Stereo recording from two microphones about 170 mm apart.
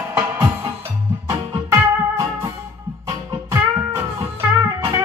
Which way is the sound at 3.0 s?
20° right (ahead or behind).